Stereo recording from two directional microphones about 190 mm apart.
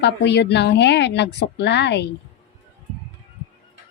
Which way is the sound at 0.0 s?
65° left (ahead or behind).